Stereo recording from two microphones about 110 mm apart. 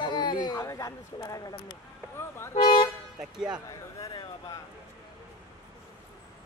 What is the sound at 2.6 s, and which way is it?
Toot, 40° left (ahead or behind).